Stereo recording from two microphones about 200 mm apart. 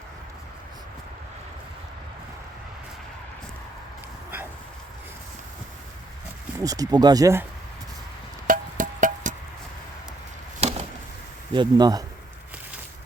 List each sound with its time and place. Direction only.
6.6 s speech: 20° right (ahead or behind)
8.4 s music: 40° right (ahead or behind)
10.6 s a sound: 35° right (ahead or behind)
11.5 s speech: 20° right (ahead or behind)